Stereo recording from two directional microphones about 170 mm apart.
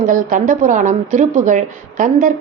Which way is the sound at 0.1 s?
50° right (ahead or behind).